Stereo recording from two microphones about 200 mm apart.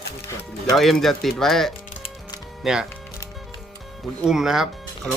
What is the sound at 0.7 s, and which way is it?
Speech, centre (ahead or behind).